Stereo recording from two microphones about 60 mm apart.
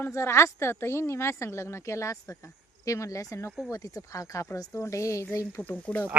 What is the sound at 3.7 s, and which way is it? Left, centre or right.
Speech, left.